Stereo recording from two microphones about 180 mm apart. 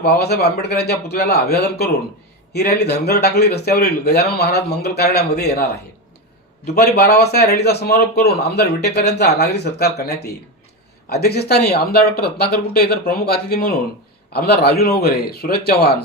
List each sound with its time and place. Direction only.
0.0 s speech: 65° left (ahead or behind)
6.7 s speech: 60° left (ahead or behind)